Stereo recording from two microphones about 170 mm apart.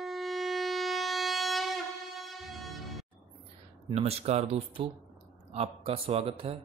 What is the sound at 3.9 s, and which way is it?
Speech, 35° right (ahead or behind).